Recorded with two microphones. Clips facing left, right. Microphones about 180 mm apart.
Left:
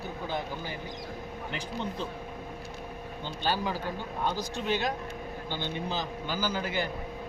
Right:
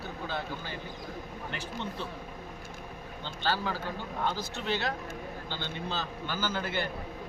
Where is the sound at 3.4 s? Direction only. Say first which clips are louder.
Left 1 dB; 15° left (ahead or behind).